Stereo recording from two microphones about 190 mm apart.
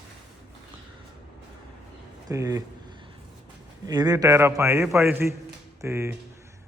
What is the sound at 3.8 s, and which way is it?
A man's voice, 20° right (ahead or behind).